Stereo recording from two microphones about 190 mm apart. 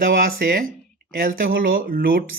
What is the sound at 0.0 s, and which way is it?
Speech, 50° right (ahead or behind).